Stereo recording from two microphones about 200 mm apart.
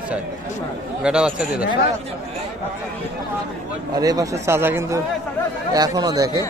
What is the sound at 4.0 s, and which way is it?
Speech, 15° right (ahead or behind).